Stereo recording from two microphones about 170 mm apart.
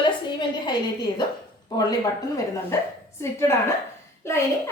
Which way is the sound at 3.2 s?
15° left (ahead or behind).